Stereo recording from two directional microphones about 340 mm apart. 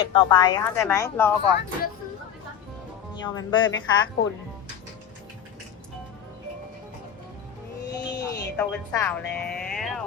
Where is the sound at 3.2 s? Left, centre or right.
Centre.